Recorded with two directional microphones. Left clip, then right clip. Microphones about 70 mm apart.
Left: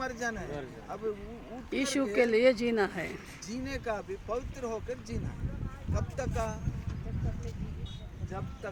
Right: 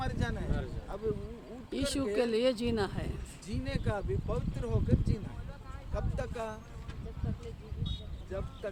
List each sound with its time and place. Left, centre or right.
0.0 s speech: centre
1.7 s speech: centre
2.1 s speech: left
3.5 s speech: centre